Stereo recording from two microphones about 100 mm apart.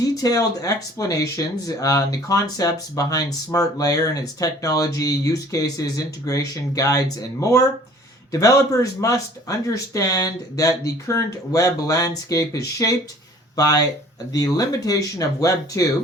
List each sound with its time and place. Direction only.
0.0 s speech: 40° left (ahead or behind)